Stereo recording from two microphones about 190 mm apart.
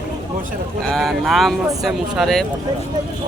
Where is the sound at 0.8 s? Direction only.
Centre (ahead or behind).